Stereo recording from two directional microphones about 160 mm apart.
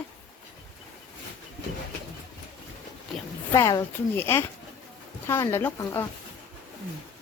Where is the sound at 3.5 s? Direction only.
20° left (ahead or behind).